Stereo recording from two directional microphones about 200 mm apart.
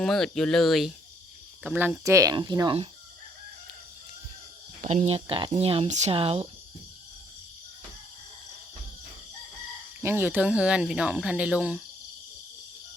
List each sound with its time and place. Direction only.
0.0 s speech: 5° left (ahead or behind); by 2.9 s 25° right (ahead or behind)
4.8 s speech: 35° right (ahead or behind)
10.0 s speech: 10° right (ahead or behind)